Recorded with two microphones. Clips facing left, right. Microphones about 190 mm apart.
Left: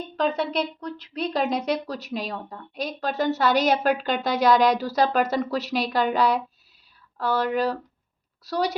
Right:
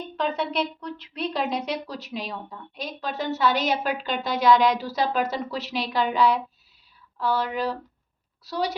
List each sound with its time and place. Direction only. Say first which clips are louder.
0.2 s a woman's voice: left 2 dB; 40° left (ahead or behind)